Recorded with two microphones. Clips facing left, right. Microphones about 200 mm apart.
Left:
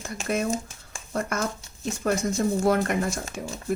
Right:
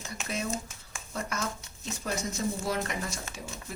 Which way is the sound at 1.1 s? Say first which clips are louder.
Left 7 dB; 50° left (ahead or behind).